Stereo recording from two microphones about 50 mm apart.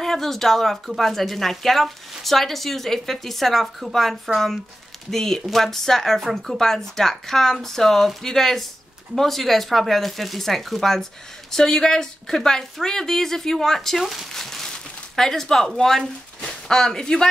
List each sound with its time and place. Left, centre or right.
0.0 s a woman's voice: centre